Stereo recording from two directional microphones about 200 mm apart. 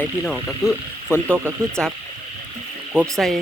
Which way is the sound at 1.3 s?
10° right (ahead or behind).